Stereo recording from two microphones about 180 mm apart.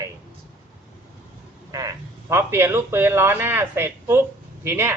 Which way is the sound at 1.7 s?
20° right (ahead or behind).